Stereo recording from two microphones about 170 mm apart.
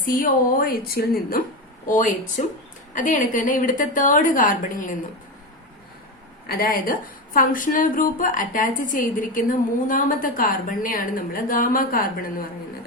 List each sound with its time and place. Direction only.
0.0 s a woman's voice: 55° left (ahead or behind)
2.9 s a woman's voice: 50° left (ahead or behind)
6.5 s a woman's voice: 55° left (ahead or behind)